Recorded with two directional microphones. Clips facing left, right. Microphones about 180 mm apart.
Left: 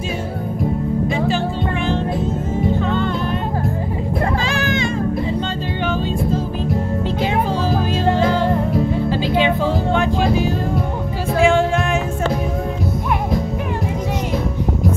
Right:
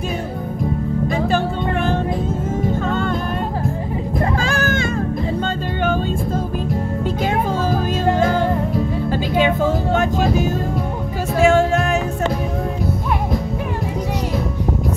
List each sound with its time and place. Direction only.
1.0 s music: 50° right (ahead or behind)
4.4 s music: 45° right (ahead or behind)
7.2 s music: 45° right (ahead or behind)